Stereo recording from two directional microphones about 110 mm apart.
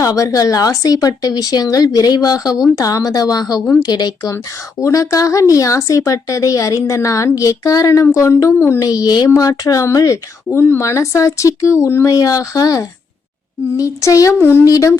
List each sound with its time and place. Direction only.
0.0 s speech: 30° left (ahead or behind)
8.8 s speech: 35° left (ahead or behind)